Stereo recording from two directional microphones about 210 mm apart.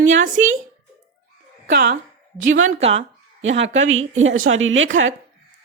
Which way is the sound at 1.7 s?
45° right (ahead or behind).